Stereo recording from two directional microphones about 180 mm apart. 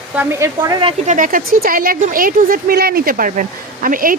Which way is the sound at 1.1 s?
50° right (ahead or behind).